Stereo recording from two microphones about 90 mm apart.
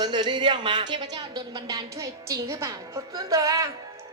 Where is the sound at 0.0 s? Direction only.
55° right (ahead or behind).